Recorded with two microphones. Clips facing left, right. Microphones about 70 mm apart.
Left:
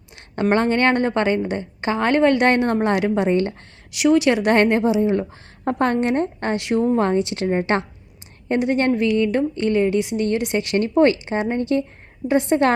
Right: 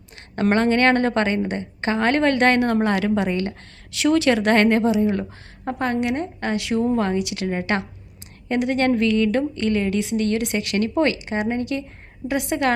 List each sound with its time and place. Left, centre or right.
0.5 s a woman's voice: left
5.6 s a woman's voice: left